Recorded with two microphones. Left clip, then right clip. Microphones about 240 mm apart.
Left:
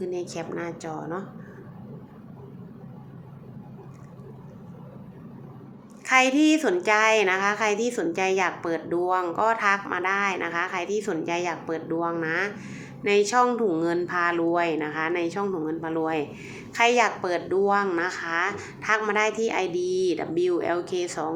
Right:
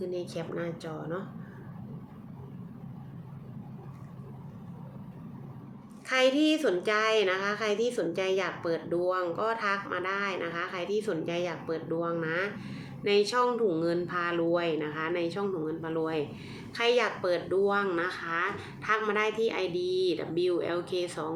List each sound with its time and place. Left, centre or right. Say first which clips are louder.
0.1 s a woman's voice: left 4 dB; centre
6.1 s a woman's voice: left 5 dB; centre